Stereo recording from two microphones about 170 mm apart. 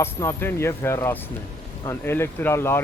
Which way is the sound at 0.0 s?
15° left (ahead or behind).